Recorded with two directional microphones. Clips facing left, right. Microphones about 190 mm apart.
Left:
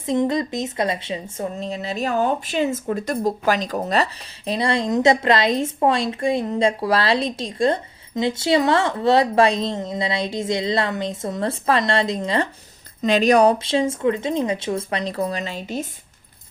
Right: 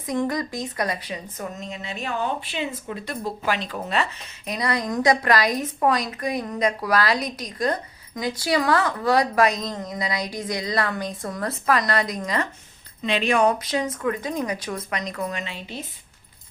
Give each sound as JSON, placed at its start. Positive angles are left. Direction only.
{"t": 0.0, "sound": "speech", "side_deg": 25}
{"t": 13.0, "sound": "speech", "side_deg": 40}